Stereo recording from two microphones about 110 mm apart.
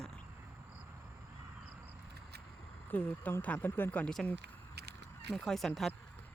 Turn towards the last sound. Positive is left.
turn(degrees=0)  # may be behind; listen again after turning